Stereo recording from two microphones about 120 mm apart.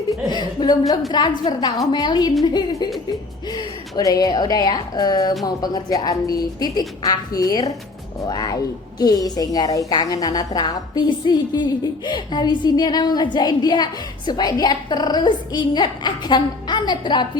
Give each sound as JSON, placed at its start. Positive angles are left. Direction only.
{"t": 0.1, "sound": "a woman's voice", "side_deg": 40}